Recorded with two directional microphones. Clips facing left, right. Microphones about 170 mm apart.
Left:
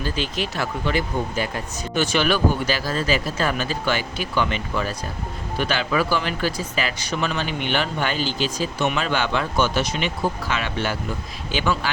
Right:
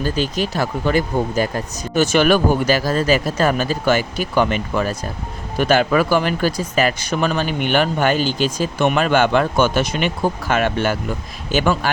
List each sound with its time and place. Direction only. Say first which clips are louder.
0.0 s speech: right 5 dB; 40° right (ahead or behind)